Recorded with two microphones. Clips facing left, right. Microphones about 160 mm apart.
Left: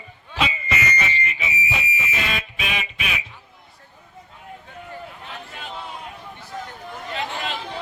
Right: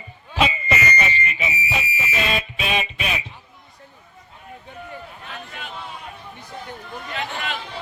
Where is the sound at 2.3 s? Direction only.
25° right (ahead or behind).